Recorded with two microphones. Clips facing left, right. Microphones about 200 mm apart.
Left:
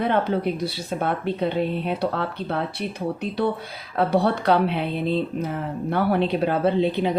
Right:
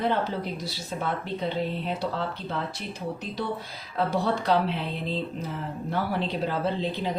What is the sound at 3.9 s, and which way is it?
Speech, 60° left (ahead or behind).